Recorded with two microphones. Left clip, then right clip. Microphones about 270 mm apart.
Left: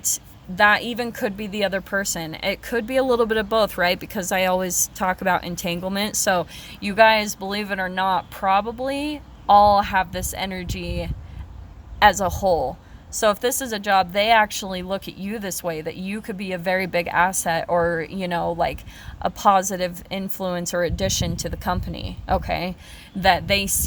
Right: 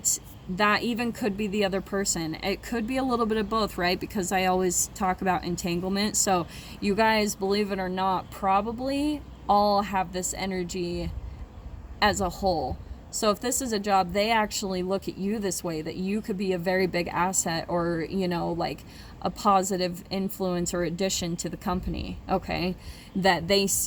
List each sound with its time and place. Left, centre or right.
0.0 s a woman's voice: left
12.3 s speech: left
13.2 s speech: left